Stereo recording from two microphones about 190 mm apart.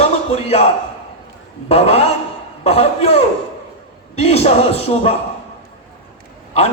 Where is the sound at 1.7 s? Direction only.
35° left (ahead or behind).